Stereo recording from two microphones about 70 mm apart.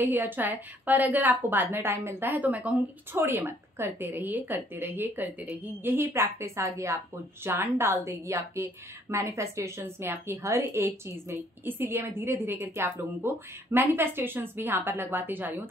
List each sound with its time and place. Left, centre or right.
0.0 s a woman's voice: right
7.4 s a woman's voice: right